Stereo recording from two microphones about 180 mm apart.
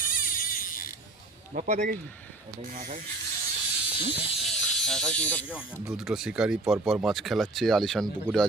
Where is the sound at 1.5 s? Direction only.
40° right (ahead or behind).